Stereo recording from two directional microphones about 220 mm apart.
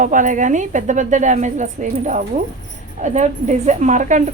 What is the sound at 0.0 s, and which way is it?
A woman's voice, 35° right (ahead or behind).